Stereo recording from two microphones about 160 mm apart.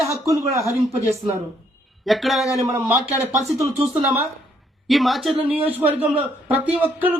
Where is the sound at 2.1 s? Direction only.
Centre (ahead or behind).